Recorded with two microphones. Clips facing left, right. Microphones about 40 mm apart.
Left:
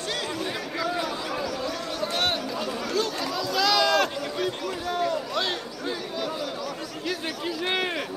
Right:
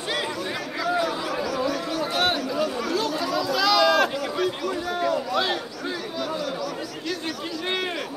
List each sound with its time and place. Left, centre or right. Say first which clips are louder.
0.7 s chatter: right 5 dB; centre